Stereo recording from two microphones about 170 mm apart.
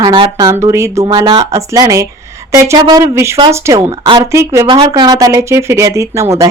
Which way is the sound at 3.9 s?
30° right (ahead or behind).